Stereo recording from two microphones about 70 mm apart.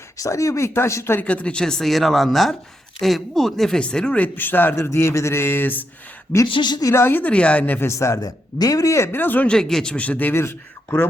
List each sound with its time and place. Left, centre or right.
0.2 s speech: left
1.2 s a woman's voice: centre
4.4 s a man's voice: left
4.8 s speech: left
6.6 s speech: left
6.8 s a man's voice: left
7.9 s speech: left
8.2 s speech: left
9.1 s a man's voice: left
9.5 s a man's voice: centre; by 11.1 s left